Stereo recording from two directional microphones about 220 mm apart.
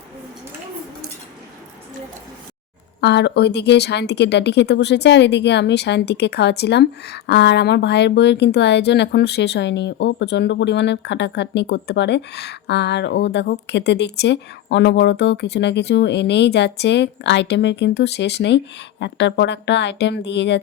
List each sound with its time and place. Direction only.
3.0 s speech: 50° left (ahead or behind)